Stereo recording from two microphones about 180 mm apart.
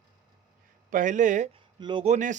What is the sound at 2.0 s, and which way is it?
Speech, 45° right (ahead or behind).